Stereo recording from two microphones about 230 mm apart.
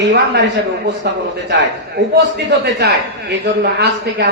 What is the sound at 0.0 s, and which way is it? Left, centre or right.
Speech, right.